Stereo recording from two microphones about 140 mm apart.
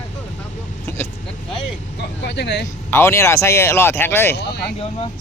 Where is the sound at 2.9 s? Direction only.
20° left (ahead or behind).